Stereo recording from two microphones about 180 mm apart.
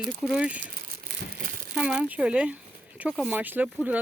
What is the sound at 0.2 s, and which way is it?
Speech, 5° right (ahead or behind).